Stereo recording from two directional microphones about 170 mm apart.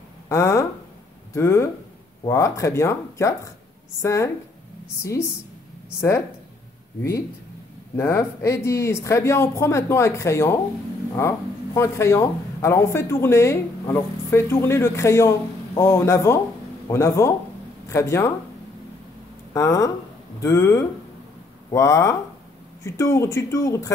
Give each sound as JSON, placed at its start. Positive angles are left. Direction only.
{"t": 0.3, "sound": "speech", "side_deg": 15}
{"t": 19.5, "sound": "speech", "side_deg": 20}